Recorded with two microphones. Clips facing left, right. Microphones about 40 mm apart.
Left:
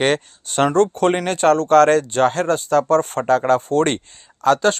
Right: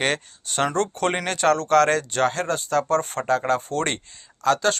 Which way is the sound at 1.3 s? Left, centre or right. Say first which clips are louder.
Left 5 dB; centre.